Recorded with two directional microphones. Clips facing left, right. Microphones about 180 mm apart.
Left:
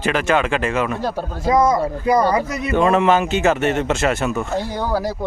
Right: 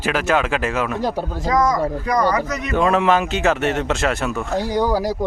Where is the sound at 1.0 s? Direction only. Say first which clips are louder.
Right 1 dB; 15° right (ahead or behind).